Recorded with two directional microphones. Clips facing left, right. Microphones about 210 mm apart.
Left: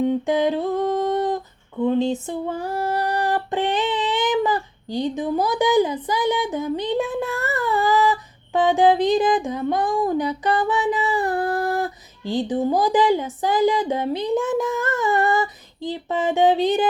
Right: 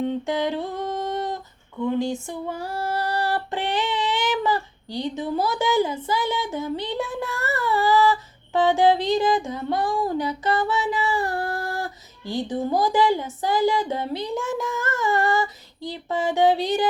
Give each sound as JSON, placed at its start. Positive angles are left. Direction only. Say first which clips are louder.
{"t": 0.0, "sound": "humming", "louder": "left 5 dB", "side_deg": 15}
{"t": 1.8, "sound": "a sound", "louder": "left 4 dB", "side_deg": 20}
{"t": 2.6, "sound": "child singing", "louder": "left 2 dB", "side_deg": 15}